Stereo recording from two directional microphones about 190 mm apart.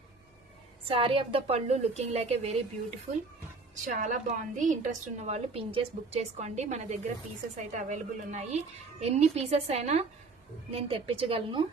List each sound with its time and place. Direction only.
0.9 s a woman's voice: 30° right (ahead or behind)
3.8 s a woman's voice: 40° right (ahead or behind)